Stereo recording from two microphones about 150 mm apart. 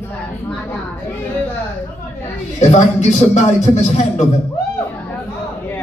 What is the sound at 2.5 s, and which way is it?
Speech, 50° left (ahead or behind).